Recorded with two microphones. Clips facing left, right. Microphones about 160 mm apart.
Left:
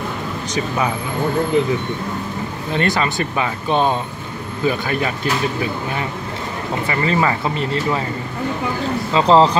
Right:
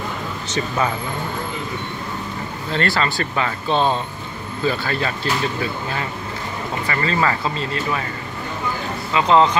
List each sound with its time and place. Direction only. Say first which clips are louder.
0.5 s speech: left 1 dB; 10° left (ahead or behind)
2.7 s speech: left 2 dB; 15° left (ahead or behind)
9.1 s speech: left 2 dB; 30° left (ahead or behind)